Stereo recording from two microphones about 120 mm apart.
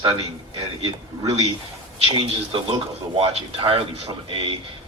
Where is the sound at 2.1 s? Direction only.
45° right (ahead or behind).